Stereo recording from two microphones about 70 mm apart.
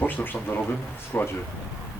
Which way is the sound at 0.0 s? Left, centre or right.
Left.